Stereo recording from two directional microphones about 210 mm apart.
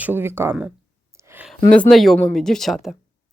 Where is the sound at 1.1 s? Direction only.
10° right (ahead or behind).